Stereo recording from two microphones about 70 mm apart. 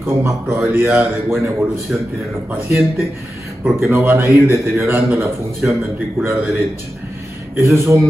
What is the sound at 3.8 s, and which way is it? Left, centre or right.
A man's voice, right.